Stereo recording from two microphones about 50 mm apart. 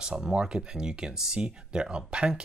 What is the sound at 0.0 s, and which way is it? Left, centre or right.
Speech, centre.